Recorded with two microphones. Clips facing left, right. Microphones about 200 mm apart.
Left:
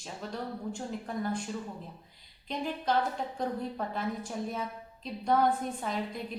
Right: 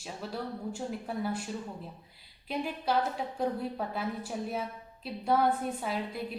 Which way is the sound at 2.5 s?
10° right (ahead or behind).